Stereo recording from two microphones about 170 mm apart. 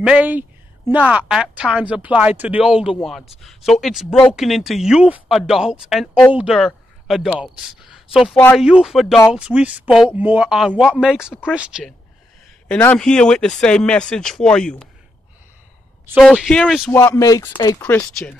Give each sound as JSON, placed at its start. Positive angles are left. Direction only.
{"t": 0.0, "sound": "a woman's voice", "side_deg": -10}
{"t": 12.6, "sound": "speech", "side_deg": 5}
{"t": 16.2, "sound": "speech", "side_deg": 0}
{"t": 16.9, "sound": "speech", "side_deg": 15}